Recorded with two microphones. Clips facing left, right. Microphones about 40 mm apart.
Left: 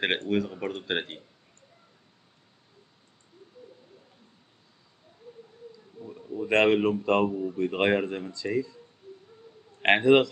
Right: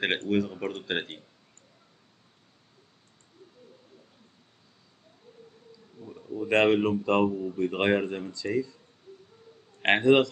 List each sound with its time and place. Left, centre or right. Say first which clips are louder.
0.3 s speech: even; centre
6.0 s bee: even; centre
6.5 s speech: left 1 dB; centre
7.2 s speech: even; centre
7.5 s speech: left 1 dB; centre
9.1 s a sound: left 2 dB; left
9.8 s a man's voice: left 1 dB; centre